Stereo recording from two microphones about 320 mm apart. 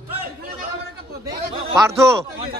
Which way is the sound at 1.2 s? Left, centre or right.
Centre.